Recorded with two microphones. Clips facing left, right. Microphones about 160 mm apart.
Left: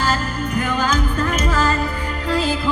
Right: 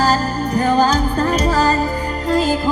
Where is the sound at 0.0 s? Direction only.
35° right (ahead or behind).